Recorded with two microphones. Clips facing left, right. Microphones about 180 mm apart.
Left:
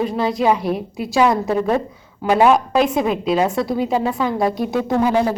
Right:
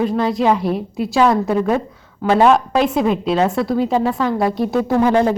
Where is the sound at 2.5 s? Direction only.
Centre (ahead or behind).